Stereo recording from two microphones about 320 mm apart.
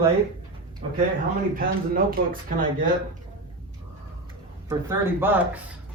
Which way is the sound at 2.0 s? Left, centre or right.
Right.